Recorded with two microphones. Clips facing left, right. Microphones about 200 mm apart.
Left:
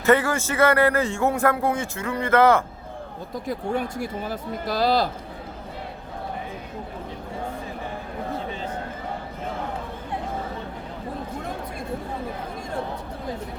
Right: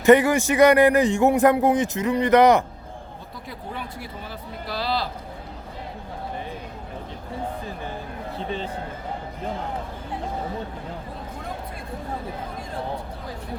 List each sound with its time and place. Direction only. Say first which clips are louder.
0.0 s speech: right 5 dB; 15° right (ahead or behind)
3.4 s speech: left 9 dB; 45° left (ahead or behind)